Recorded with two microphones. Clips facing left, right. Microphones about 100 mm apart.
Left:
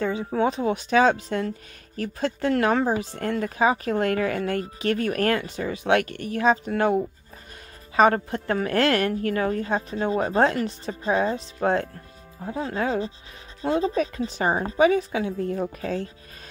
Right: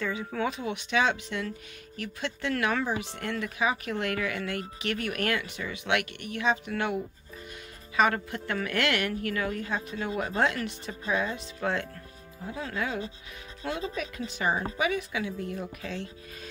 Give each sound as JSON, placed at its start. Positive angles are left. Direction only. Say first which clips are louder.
{"t": 0.0, "sound": "speech", "louder": "left 7 dB", "side_deg": 30}